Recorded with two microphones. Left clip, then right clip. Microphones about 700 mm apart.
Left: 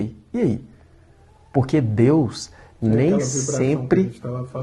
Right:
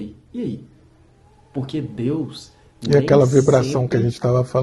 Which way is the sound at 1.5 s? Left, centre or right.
Left.